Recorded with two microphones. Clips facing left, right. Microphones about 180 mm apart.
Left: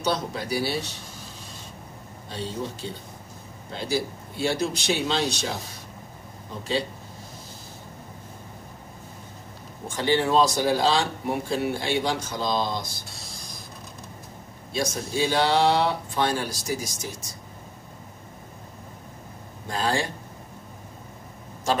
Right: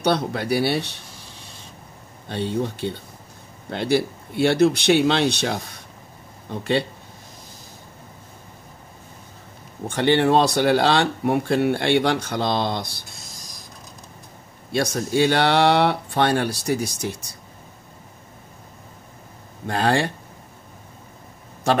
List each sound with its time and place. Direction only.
0.0 s speech: 65° right (ahead or behind)
2.2 s speech: 65° right (ahead or behind)
9.8 s speech: 65° right (ahead or behind)
14.7 s speech: 65° right (ahead or behind)
19.7 s speech: 60° right (ahead or behind)